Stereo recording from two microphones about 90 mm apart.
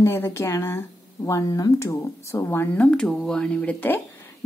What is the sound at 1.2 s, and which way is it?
Speech, 45° left (ahead or behind).